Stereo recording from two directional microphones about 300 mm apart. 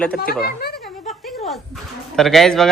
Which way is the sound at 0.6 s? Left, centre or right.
Left.